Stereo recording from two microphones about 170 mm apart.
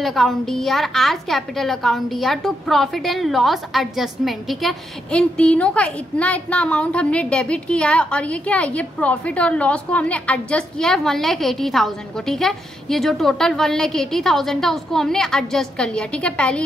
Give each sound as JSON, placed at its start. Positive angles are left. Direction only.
{"t": 0.0, "sound": "a woman's voice", "side_deg": 0}